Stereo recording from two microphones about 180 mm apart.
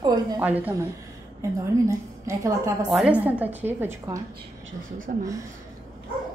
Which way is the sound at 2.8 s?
5° right (ahead or behind).